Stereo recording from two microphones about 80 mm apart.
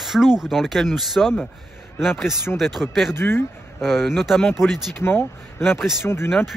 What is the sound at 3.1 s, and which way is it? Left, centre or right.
Speech, left.